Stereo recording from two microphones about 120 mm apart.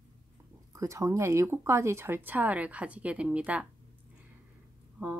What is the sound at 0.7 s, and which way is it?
Speech, 25° right (ahead or behind).